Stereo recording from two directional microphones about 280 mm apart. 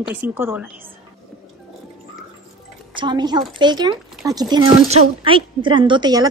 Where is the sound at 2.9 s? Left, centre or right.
Centre.